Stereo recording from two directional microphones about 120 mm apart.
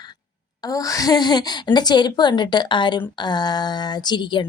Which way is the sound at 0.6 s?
30° left (ahead or behind).